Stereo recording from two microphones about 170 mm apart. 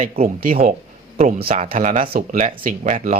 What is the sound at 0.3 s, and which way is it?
Speech, 55° right (ahead or behind).